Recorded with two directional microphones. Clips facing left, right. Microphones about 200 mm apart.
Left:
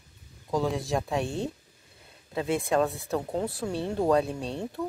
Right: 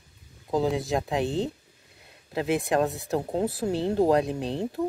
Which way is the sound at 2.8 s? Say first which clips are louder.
Right 1 dB; 20° right (ahead or behind).